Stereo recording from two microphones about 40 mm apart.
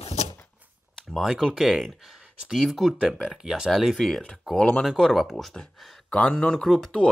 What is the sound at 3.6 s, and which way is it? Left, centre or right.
Speech, centre.